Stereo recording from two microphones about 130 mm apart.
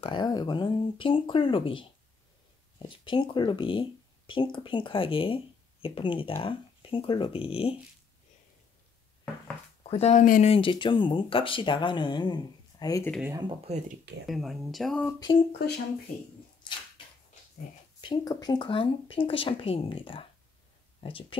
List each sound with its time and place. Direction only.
0.0 s speech: 35° left (ahead or behind)
3.1 s speech: 35° left (ahead or behind)
9.8 s speech: 55° left (ahead or behind)
10.2 s speech: 90° left
10.5 s speech: 40° left (ahead or behind)
13.3 s speech: 35° right (ahead or behind)
13.7 s speech: 65° right (ahead or behind)
14.2 s speech: centre (ahead or behind)
15.3 s speech: 40° left (ahead or behind)
18.0 s speech: 30° left (ahead or behind)